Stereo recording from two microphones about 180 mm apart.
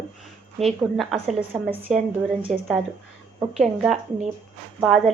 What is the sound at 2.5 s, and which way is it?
Speech, centre (ahead or behind).